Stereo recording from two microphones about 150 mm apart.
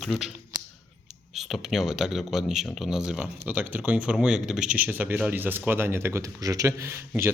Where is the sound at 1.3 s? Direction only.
Centre (ahead or behind).